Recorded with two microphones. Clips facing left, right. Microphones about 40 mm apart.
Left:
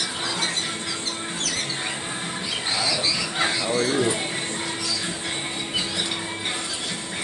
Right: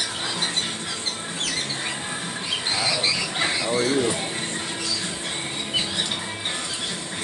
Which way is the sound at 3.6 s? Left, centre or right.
Right.